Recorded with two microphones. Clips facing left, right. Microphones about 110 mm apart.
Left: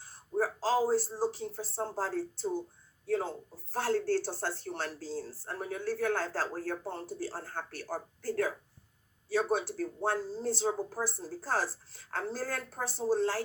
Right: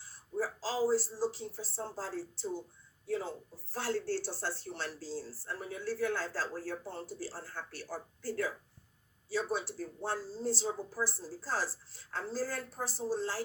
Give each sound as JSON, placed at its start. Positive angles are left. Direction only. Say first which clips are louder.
{"t": 0.0, "sound": "speech", "louder": "left 4 dB", "side_deg": 50}